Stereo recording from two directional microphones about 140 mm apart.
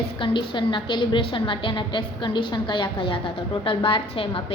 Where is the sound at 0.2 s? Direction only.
35° left (ahead or behind).